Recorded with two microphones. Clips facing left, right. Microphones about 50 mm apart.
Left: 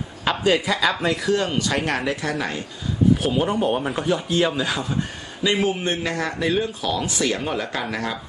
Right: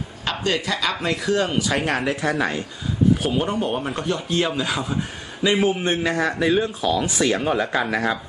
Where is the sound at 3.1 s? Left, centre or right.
Centre.